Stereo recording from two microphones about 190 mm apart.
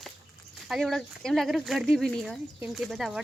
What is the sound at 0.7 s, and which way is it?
Speech, centre (ahead or behind).